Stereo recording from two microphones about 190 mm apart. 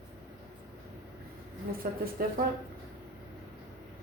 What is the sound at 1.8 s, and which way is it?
Speech, 45° right (ahead or behind).